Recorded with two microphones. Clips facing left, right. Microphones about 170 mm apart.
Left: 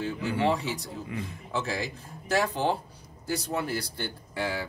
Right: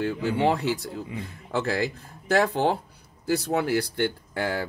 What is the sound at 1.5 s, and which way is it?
Speech, 60° right (ahead or behind).